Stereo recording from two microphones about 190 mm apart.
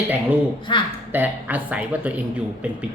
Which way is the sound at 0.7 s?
25° left (ahead or behind).